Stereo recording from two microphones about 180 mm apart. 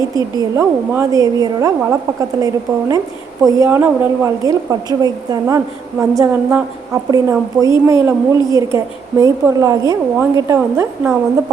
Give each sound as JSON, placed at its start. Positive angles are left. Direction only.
{"t": 0.2, "sound": "a woman's voice", "side_deg": -20}
{"t": 3.4, "sound": "a woman's voice", "side_deg": -15}